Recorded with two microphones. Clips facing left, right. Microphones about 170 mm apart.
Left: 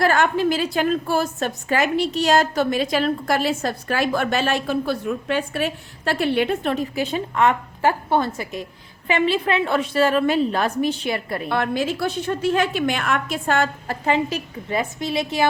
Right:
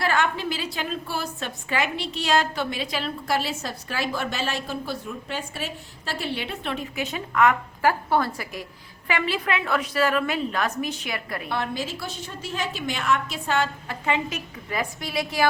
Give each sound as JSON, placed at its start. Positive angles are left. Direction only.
{"t": 0.0, "sound": "a woman's voice", "side_deg": 45}
{"t": 11.4, "sound": "a woman's voice", "side_deg": 60}